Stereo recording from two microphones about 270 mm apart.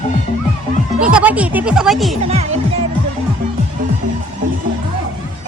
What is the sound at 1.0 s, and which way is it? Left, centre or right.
Speech, centre.